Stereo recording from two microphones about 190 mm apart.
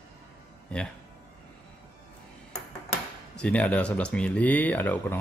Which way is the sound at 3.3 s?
5° left (ahead or behind).